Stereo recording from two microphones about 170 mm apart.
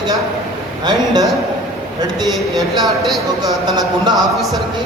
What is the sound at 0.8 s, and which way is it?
Speech, 25° right (ahead or behind).